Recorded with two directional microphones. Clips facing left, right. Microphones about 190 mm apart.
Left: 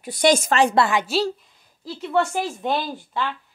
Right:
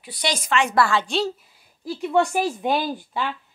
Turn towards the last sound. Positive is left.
turn(degrees=-15)  # may be behind; listen again after turning